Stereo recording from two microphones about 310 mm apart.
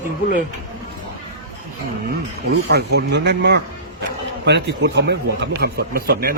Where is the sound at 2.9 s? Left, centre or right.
Right.